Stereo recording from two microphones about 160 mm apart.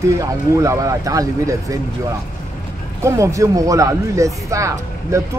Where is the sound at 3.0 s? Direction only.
20° right (ahead or behind).